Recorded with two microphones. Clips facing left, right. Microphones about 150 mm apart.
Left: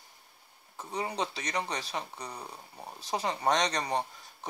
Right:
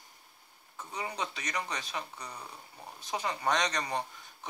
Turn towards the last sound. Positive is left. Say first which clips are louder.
# left 3 dB
turn(degrees=30)  # may be behind; listen again after turning